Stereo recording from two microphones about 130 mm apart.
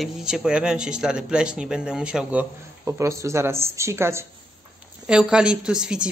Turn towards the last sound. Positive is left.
turn(degrees=-5)  # may be behind; listen again after turning